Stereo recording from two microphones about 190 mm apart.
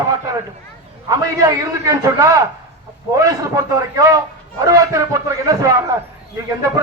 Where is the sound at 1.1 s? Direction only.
20° right (ahead or behind).